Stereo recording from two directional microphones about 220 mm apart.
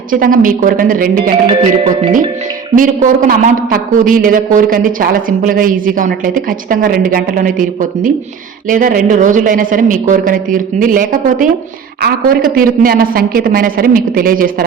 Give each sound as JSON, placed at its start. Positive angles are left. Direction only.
{"t": 0.1, "sound": "a man's voice", "side_deg": -40}
{"t": 1.5, "sound": "music", "side_deg": -20}
{"t": 2.7, "sound": "a man's voice", "side_deg": -40}